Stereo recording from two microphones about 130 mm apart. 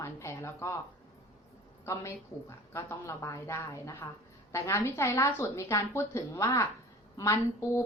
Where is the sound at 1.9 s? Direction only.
20° left (ahead or behind).